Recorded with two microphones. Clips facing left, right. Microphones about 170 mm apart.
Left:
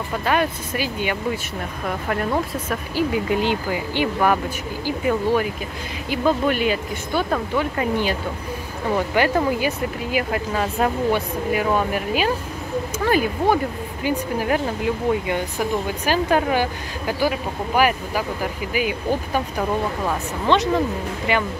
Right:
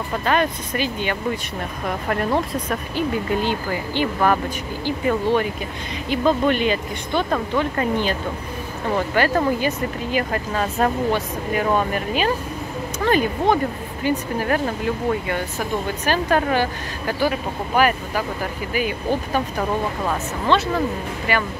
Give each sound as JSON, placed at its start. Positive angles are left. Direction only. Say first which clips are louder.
{"t": 0.2, "sound": "speech", "louder": "even", "side_deg": 10}
{"t": 1.9, "sound": "speech", "louder": "right 1 dB", "side_deg": 0}
{"t": 3.3, "sound": "speech", "louder": "left 1 dB", "side_deg": 15}
{"t": 16.1, "sound": "speech", "louder": "even", "side_deg": 10}